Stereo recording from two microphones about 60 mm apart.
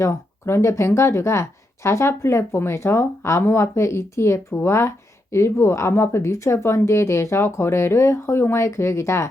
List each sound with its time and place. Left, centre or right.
0.0 s speech: left